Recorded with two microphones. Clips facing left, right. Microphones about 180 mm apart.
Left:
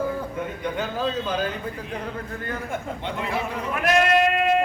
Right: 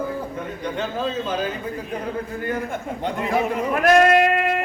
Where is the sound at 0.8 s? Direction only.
5° right (ahead or behind).